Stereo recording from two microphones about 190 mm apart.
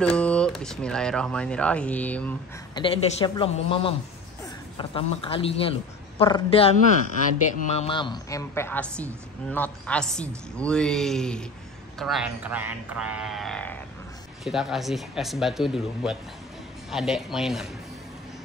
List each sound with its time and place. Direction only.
0.0 s speech: 5° left (ahead or behind)
2.7 s a woman's voice: 25° left (ahead or behind); by 17.6 s centre (ahead or behind)